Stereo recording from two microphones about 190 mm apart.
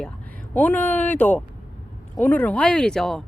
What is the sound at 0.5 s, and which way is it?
Speech, 10° left (ahead or behind).